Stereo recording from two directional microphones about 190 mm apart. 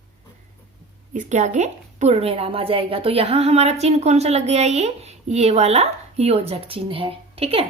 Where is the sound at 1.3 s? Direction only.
40° right (ahead or behind).